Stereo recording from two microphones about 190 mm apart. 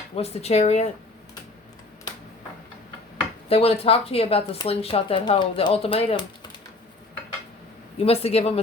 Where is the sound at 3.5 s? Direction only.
30° left (ahead or behind).